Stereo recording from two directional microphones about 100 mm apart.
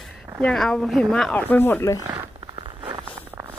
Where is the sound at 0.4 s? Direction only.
5° left (ahead or behind); by 2.0 s 25° left (ahead or behind).